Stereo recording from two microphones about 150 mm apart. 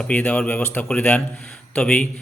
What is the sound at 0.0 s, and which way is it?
A man's voice, 10° left (ahead or behind).